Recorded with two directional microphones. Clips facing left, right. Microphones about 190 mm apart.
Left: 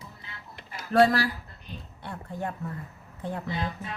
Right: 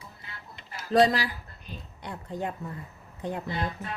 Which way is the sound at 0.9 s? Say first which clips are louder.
Left 1 dB; 20° right (ahead or behind).